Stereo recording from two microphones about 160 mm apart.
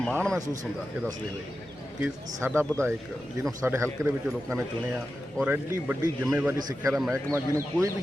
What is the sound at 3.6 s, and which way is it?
Speech, 15° right (ahead or behind).